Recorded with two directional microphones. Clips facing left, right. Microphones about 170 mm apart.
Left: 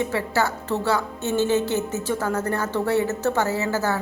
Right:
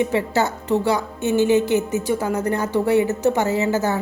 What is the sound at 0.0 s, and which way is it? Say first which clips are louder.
A woman's voice: right 3 dB; 20° right (ahead or behind).